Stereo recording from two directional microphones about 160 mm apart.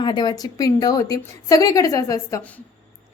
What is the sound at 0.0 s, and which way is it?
A woman's voice, 25° left (ahead or behind).